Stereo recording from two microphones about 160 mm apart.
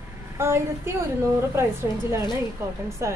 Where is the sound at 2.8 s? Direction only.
15° right (ahead or behind).